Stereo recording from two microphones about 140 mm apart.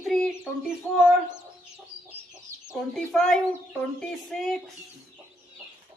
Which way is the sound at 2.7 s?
Centre (ahead or behind).